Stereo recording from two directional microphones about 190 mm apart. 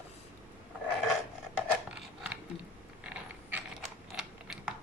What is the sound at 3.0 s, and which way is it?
Mechanisms, 5° right (ahead or behind).